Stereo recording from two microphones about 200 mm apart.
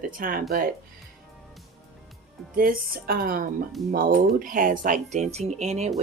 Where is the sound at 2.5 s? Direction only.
45° right (ahead or behind).